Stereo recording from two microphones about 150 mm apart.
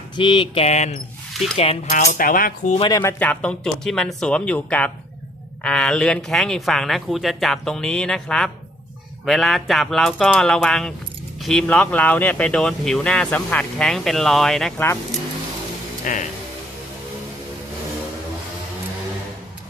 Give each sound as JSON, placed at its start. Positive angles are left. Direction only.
{"t": 0.2, "sound": "a sound", "side_deg": 35}
{"t": 2.1, "sound": "cutlery", "side_deg": 70}
{"t": 2.9, "sound": "speech", "side_deg": 20}
{"t": 16.1, "sound": "speech", "side_deg": 60}